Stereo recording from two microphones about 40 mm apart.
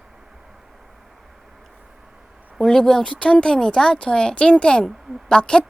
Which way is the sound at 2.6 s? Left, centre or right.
Centre.